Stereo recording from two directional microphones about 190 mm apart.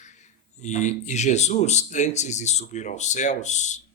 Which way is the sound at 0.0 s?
40° left (ahead or behind).